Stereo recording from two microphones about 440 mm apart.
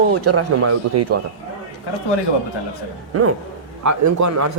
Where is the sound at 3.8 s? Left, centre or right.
Right.